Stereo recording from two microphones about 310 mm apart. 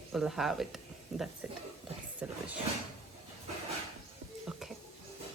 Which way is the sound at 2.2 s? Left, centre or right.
Centre.